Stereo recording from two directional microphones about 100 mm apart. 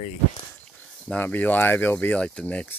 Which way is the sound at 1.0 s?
15° left (ahead or behind).